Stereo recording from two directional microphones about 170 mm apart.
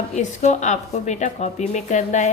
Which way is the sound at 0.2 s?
45° left (ahead or behind).